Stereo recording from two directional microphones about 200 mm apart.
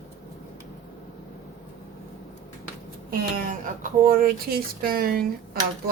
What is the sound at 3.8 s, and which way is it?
A woman's voice, 45° right (ahead or behind).